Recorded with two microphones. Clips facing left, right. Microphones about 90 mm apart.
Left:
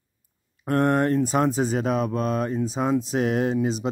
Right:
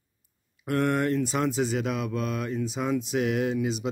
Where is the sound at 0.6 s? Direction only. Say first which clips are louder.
Left 4 dB; 40° left (ahead or behind).